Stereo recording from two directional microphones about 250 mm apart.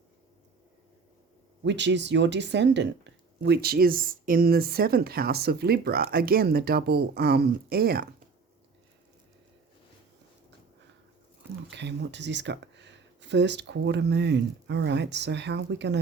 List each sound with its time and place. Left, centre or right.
1.6 s speech: right
11.7 s speech: right